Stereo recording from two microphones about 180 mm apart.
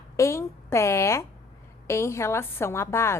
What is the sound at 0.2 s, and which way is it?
A woman's voice, 15° left (ahead or behind).